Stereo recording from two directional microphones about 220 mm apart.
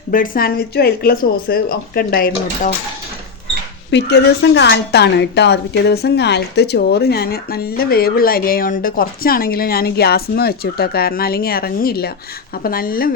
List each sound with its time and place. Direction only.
0.1 s a woman's voice: 40° left (ahead or behind)
3.9 s a woman's voice: 50° left (ahead or behind)